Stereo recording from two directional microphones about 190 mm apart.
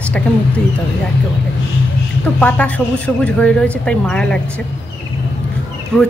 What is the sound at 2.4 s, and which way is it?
A woman's voice, 5° left (ahead or behind).